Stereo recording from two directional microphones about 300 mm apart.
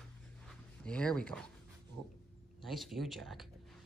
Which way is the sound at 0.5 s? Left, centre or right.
Centre.